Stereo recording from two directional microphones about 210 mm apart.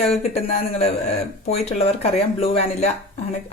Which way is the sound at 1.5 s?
30° left (ahead or behind).